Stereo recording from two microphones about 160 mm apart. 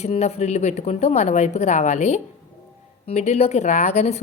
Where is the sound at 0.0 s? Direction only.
40° left (ahead or behind).